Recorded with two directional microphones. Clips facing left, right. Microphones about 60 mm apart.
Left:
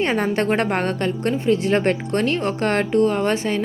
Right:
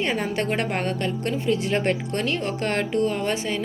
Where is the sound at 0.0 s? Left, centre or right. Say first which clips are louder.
Left 5 dB; left.